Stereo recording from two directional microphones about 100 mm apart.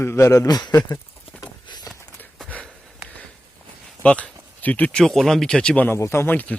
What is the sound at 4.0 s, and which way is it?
Speech, 15° left (ahead or behind).